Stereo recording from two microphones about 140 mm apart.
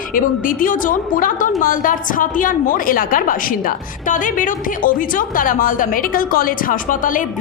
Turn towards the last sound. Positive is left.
turn(degrees=75)  # may be behind; listen again after turning